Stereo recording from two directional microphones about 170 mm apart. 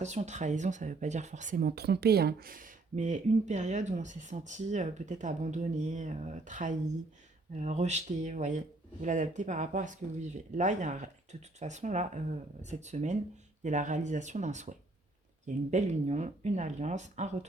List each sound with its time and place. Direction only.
0.0 s speech: 40° right (ahead or behind)